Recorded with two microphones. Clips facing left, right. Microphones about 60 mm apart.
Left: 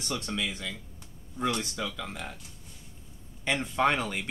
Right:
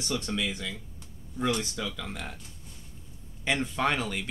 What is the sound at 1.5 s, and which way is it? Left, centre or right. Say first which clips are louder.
Speech: right 1 dB; centre.